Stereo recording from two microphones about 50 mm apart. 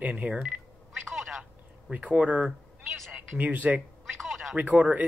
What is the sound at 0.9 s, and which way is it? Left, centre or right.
Telephone, centre.